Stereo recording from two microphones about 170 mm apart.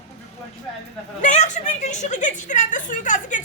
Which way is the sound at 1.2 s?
45° left (ahead or behind).